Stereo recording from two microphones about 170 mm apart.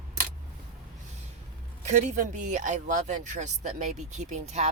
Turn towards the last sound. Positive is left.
turn(degrees=-45)  # may be behind; listen again after turning